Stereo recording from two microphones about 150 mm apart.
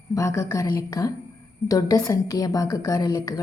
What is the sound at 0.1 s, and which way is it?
A woman's voice, 20° left (ahead or behind).